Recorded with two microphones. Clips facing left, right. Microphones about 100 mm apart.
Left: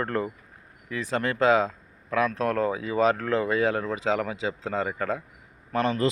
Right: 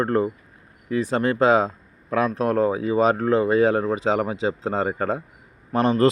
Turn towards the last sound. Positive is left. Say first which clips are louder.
# right 5 dB
turn(degrees=-30)  # may be behind; listen again after turning